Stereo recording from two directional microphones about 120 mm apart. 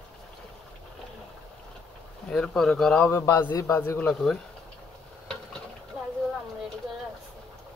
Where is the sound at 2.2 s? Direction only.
5° left (ahead or behind).